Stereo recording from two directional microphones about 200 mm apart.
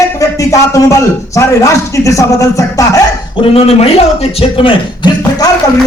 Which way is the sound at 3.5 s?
30° left (ahead or behind).